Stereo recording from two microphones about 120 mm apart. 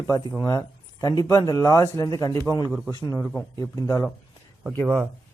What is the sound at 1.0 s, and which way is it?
Speech, 30° left (ahead or behind).